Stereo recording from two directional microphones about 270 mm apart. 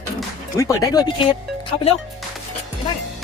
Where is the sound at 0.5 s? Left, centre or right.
Centre.